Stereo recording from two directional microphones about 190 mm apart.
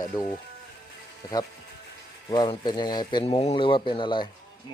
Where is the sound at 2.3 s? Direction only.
25° left (ahead or behind).